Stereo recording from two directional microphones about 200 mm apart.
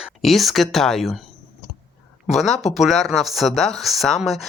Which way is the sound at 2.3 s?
Centre (ahead or behind).